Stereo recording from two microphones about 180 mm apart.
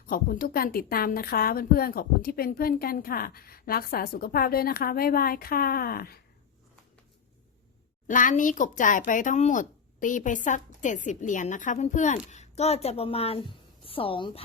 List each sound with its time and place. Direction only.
0.1 s a woman's voice: 55° left (ahead or behind)
8.0 s a woman's voice: 45° left (ahead or behind); by 14.4 s 30° left (ahead or behind)